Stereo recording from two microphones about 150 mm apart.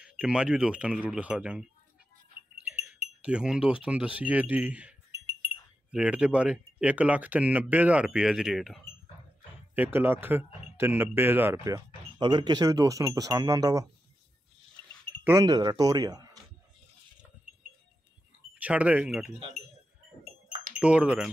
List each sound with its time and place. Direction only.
0.0 s speech: 5° right (ahead or behind)
9.8 s speech: 15° right (ahead or behind)
15.2 s speech: 25° right (ahead or behind)
18.5 s speech: 10° right (ahead or behind)
20.8 s speech: 5° right (ahead or behind)